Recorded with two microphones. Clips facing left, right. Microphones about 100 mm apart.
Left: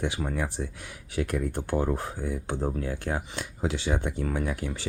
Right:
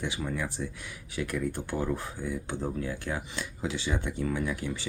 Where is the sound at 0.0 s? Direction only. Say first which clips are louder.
Left 3 dB; 50° left (ahead or behind).